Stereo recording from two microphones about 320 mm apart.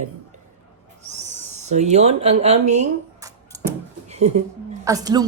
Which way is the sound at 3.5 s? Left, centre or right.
Centre.